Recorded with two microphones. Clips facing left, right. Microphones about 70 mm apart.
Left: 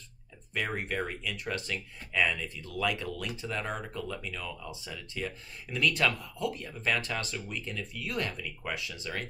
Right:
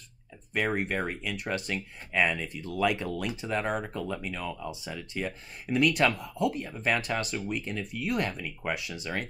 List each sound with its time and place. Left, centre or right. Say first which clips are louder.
0.6 s speech: right 4 dB; right